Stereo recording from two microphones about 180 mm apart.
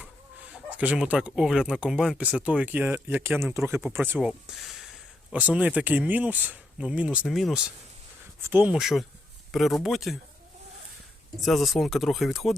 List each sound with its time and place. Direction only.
0.0 s speech: 5° right (ahead or behind)
8.4 s speech: 15° right (ahead or behind)
11.3 s speech: centre (ahead or behind)